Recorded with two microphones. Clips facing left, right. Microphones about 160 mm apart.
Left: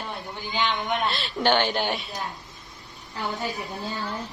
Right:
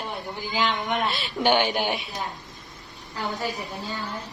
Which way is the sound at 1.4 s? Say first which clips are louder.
Right 1 dB; 10° right (ahead or behind).